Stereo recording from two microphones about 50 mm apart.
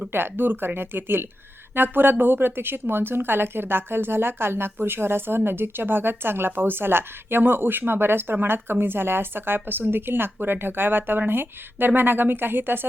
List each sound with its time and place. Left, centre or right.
0.1 s a woman's voice: right